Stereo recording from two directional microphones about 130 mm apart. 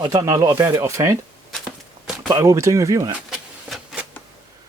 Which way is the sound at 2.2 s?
25° right (ahead or behind).